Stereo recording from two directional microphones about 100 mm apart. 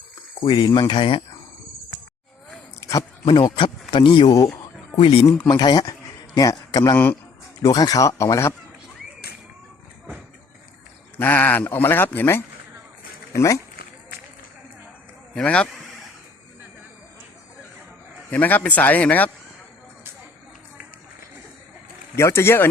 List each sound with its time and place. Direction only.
0.3 s speech: 50° left (ahead or behind)
3.2 s speech: 55° left (ahead or behind)
4.9 s speech: 65° left (ahead or behind)
5.5 s a man's voice: 45° left (ahead or behind)
6.9 s speech: 20° left (ahead or behind)
7.6 s speech: 40° left (ahead or behind)
11.2 s speech: 20° left (ahead or behind)
15.4 s speech: 10° left (ahead or behind)
18.3 s speech: 20° left (ahead or behind)
22.1 s speech: 25° left (ahead or behind)